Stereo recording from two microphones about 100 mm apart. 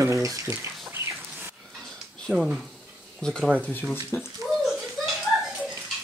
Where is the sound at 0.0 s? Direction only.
30° right (ahead or behind).